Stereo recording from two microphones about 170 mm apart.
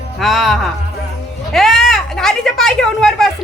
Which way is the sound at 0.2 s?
Centre (ahead or behind).